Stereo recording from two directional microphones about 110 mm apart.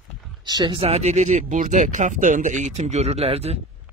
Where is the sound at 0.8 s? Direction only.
80° right.